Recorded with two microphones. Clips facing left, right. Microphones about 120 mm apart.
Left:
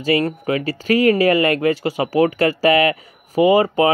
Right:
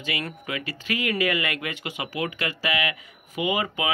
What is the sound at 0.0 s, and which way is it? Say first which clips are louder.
Speech: left 14 dB; 40° left (ahead or behind).